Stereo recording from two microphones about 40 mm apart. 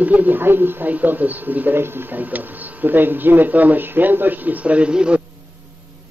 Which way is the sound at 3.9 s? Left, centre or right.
Right.